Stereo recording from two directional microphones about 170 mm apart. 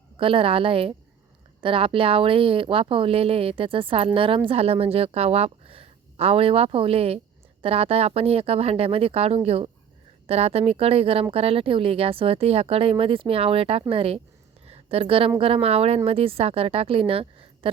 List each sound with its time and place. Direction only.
0.2 s a woman's voice: 30° right (ahead or behind)
14.7 s a sound: 35° right (ahead or behind)
15.4 s a woman's voice: 35° right (ahead or behind)